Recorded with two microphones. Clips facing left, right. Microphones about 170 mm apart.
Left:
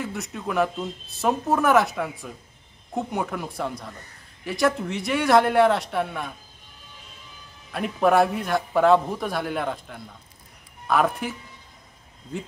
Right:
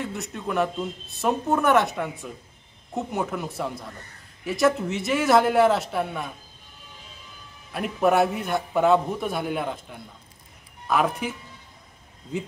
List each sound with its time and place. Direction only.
0.0 s speech: centre (ahead or behind)
7.7 s speech: centre (ahead or behind)